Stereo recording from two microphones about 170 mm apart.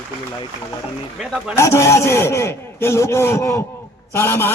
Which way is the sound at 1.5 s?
15° left (ahead or behind).